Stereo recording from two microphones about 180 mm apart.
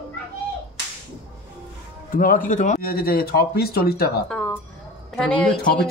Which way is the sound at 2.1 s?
50° left (ahead or behind).